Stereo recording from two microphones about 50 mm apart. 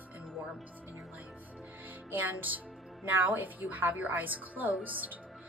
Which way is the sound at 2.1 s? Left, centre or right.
Right.